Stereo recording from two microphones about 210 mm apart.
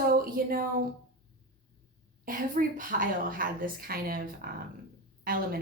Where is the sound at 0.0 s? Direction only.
45° right (ahead or behind).